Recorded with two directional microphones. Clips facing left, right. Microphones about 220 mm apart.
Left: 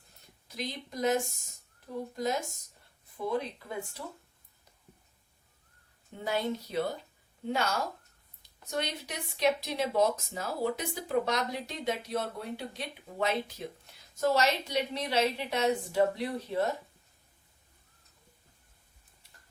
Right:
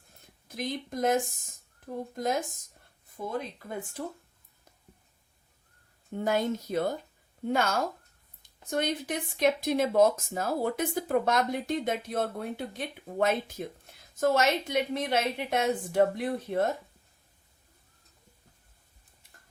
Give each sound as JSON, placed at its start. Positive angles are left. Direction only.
{"t": 0.2, "sound": "speech", "side_deg": -50}
{"t": 6.1, "sound": "speech", "side_deg": -45}